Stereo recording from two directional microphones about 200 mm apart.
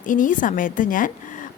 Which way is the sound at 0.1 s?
40° left (ahead or behind).